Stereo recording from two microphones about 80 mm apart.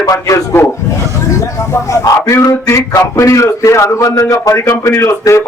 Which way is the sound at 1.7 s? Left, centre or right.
Left.